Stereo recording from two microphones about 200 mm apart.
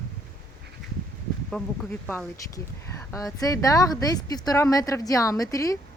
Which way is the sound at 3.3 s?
15° left (ahead or behind).